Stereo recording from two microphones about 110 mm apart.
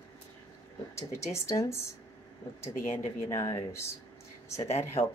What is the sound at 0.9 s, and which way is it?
Speech, 25° left (ahead or behind).